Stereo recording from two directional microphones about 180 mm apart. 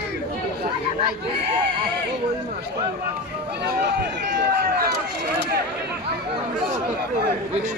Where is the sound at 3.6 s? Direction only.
70° right (ahead or behind).